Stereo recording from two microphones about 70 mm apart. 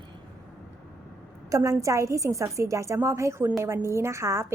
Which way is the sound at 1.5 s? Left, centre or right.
Right.